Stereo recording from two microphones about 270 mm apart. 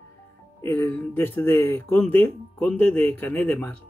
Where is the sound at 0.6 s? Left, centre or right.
Centre.